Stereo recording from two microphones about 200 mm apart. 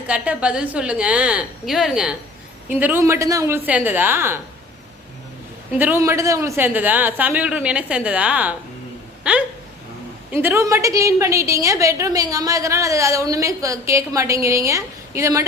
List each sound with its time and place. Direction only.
0.1 s a woman's voice: 5° right (ahead or behind)
5.7 s a woman's voice: 10° right (ahead or behind)
10.3 s a woman's voice: 10° right (ahead or behind)